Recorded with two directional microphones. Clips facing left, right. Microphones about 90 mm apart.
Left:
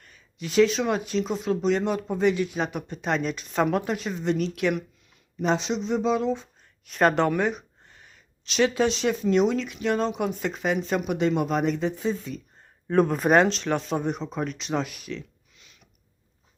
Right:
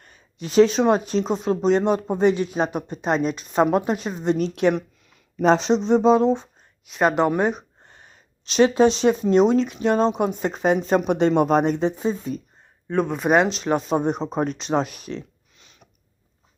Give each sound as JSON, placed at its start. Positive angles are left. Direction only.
{"t": 0.0, "sound": "speech", "side_deg": -30}
{"t": 5.4, "sound": "speech", "side_deg": -40}
{"t": 6.8, "sound": "speech", "side_deg": -10}
{"t": 7.3, "sound": "speech", "side_deg": -25}
{"t": 12.9, "sound": "speech", "side_deg": 0}